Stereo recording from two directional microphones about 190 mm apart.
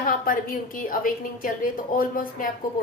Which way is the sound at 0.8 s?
45° left (ahead or behind).